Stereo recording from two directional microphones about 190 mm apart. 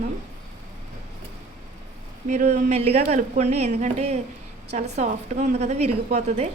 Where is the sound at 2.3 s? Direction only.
40° right (ahead or behind).